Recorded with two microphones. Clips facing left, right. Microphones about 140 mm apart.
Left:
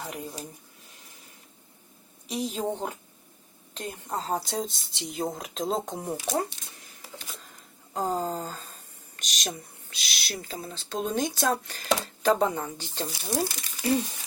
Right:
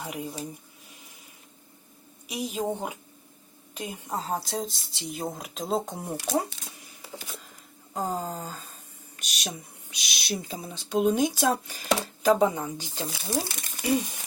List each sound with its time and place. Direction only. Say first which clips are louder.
0.0 s speech: right 2 dB; 10° right (ahead or behind)
2.2 s speech: even; 10° right (ahead or behind)
8.1 s speech: left 3 dB; 10° right (ahead or behind)
10.2 s speech: right 3 dB; 20° right (ahead or behind)
13.6 s speech: right 1 dB; 55° right (ahead or behind)